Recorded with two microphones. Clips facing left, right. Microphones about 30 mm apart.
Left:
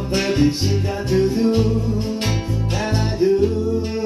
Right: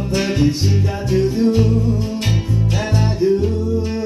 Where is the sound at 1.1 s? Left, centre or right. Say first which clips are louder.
Right 1 dB; left.